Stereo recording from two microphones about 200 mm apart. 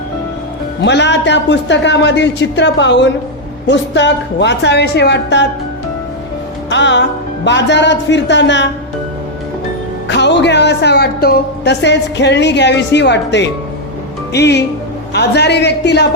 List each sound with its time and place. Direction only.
0.8 s speech: 60° left (ahead or behind)
6.7 s speech: 65° left (ahead or behind)
10.1 s speech: 60° left (ahead or behind)